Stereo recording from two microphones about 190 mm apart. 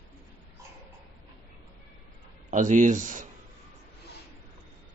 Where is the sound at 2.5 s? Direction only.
40° right (ahead or behind).